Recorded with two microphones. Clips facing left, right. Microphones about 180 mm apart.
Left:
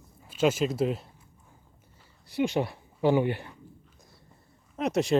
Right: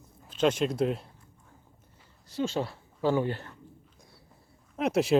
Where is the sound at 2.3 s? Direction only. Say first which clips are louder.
Left 3 dB; 15° left (ahead or behind).